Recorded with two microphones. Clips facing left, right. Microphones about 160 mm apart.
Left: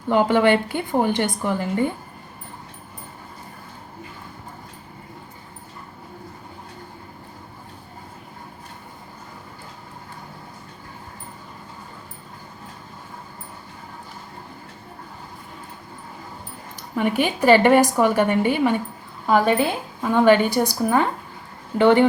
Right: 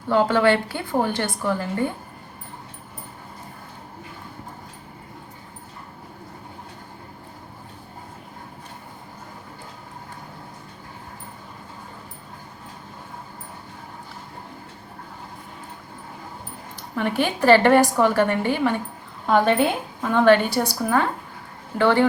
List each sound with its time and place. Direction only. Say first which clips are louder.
0.1 s a woman's voice: left 1 dB; 15° left (ahead or behind)
16.9 s a woman's voice: left 2 dB; 15° left (ahead or behind)
19.3 s a woman's voice: even; 5° left (ahead or behind)